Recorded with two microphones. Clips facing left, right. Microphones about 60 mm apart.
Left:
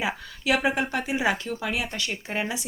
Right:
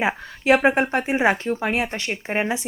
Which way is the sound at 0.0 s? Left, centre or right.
Right.